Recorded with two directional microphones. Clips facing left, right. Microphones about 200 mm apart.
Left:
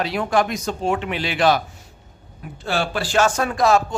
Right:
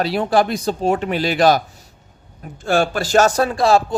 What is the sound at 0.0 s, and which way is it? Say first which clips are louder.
Speech: right 3 dB; 35° right (ahead or behind).